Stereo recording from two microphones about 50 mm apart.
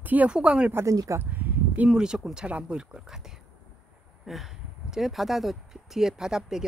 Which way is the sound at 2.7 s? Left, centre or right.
Centre.